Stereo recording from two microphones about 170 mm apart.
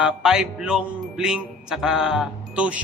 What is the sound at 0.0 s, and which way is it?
Music, 5° right (ahead or behind).